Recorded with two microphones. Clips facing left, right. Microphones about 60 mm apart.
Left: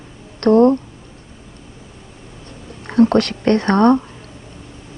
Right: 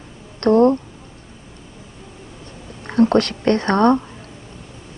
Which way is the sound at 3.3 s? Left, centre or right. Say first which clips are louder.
Left 2 dB; left.